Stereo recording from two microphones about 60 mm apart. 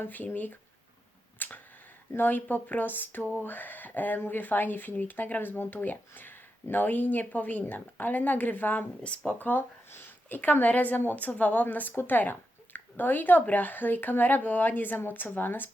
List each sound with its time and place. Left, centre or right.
0.0 s speech: left
1.4 s a sound: left
2.1 s speech: left